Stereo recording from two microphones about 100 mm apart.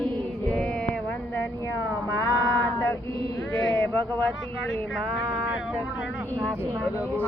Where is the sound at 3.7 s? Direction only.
15° left (ahead or behind).